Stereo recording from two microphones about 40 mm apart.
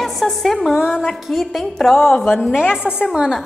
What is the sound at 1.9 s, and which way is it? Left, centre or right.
A woman's voice, centre.